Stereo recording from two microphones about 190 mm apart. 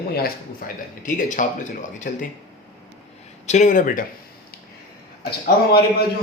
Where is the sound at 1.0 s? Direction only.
40° left (ahead or behind).